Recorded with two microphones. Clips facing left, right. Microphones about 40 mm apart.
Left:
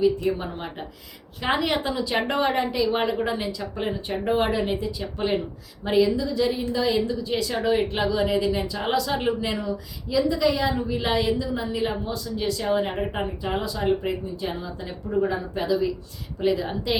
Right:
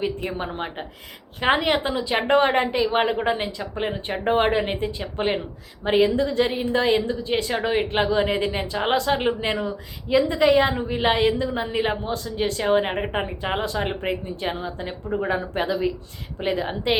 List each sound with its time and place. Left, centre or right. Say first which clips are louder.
0.0 s a woman's voice: left 4 dB; right
6.0 s a woman's voice: right 1 dB; right
13.4 s a woman's voice: left 1 dB; right